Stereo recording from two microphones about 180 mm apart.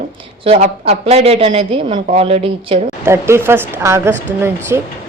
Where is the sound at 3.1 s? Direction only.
15° right (ahead or behind).